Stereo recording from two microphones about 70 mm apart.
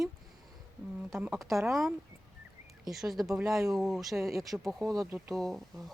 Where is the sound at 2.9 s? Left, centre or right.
Centre.